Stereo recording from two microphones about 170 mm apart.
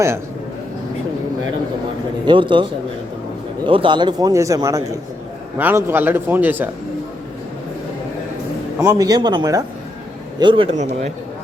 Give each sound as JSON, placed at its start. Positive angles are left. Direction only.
{"t": 2.2, "sound": "a man's voice", "side_deg": -30}
{"t": 3.7, "sound": "a man's voice", "side_deg": -30}
{"t": 8.8, "sound": "a man's voice", "side_deg": -15}